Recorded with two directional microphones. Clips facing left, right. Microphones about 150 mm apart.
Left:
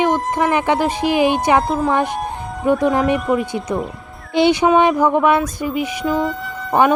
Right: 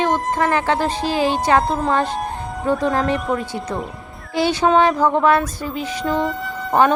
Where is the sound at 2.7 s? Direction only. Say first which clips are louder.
Left 3 dB; 10° left (ahead or behind).